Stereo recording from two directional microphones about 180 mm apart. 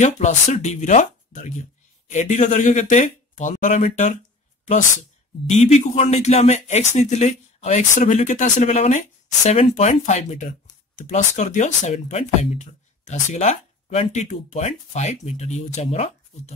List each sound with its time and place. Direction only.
0.0 s speech: 40° left (ahead or behind)
5.5 s speech: 40° left (ahead or behind)